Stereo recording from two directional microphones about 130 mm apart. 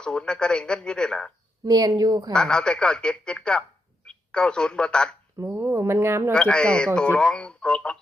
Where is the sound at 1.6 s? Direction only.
30° right (ahead or behind).